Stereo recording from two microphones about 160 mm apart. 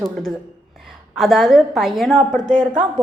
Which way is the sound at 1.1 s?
Centre (ahead or behind).